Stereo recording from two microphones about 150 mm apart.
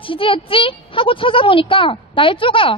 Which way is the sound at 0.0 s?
35° left (ahead or behind).